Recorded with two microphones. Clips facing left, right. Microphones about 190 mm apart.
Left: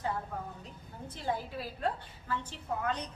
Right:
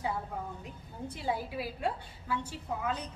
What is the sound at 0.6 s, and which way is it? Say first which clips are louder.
A woman's voice: right 4 dB; 10° right (ahead or behind).